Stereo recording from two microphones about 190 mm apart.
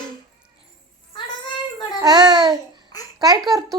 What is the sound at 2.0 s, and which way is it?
Speech, 20° right (ahead or behind).